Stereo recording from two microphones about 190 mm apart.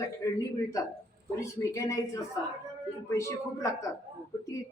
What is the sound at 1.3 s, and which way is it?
Speech, 15° left (ahead or behind).